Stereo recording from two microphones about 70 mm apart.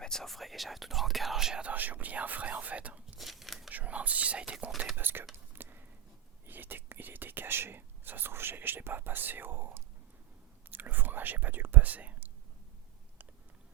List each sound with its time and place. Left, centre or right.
0.0 s speech: centre
1.6 s speech: right
3.2 s whispering: centre
3.7 s speech: right
4.9 s speech: right
5.3 s whispering: right
6.4 s speech: right